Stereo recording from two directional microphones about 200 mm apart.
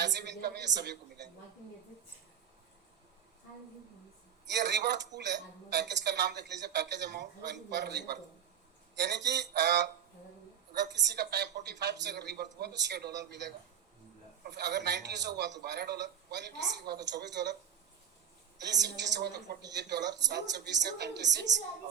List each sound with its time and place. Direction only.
0.0 s a man's voice: 60° right (ahead or behind)
4.4 s a woman's voice: 60° right (ahead or behind)
18.6 s a woman's voice: 60° right (ahead or behind)